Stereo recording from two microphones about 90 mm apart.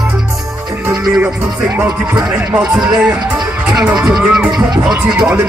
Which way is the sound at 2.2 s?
10° right (ahead or behind).